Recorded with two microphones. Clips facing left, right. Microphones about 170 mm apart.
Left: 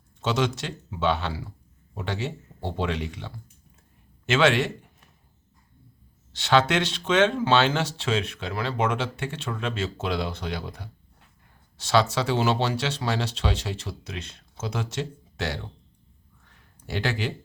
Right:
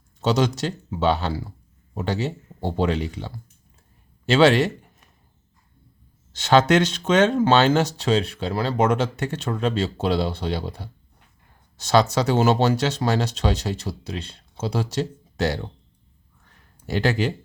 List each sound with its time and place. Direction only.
0.2 s speech: 40° right (ahead or behind)
6.3 s speech: 45° right (ahead or behind)
11.8 s speech: 40° right (ahead or behind)
16.8 s speech: 40° right (ahead or behind)